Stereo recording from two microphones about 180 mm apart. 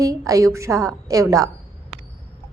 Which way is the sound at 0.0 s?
20° right (ahead or behind).